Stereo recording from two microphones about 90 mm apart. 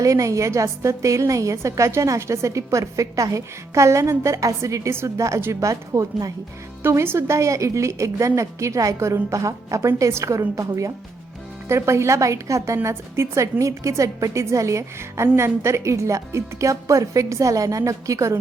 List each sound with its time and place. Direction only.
0.0 s a woman's voice: 35° right (ahead or behind)
6.8 s a woman's voice: 25° right (ahead or behind)